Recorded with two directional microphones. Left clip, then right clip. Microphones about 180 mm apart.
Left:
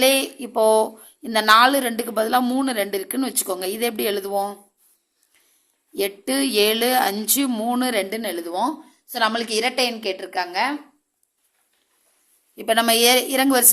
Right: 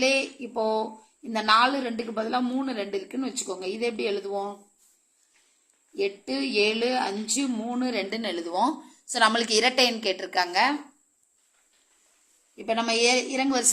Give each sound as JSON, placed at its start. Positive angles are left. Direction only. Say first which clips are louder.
{"t": 0.0, "sound": "a woman's voice", "louder": "left 6 dB", "side_deg": 50}
{"t": 5.9, "sound": "a woman's voice", "louder": "left 5 dB", "side_deg": 45}
{"t": 8.1, "sound": "a woman's voice", "louder": "left 3 dB", "side_deg": 25}
{"t": 12.5, "sound": "a woman's voice", "louder": "left 7 dB", "side_deg": 45}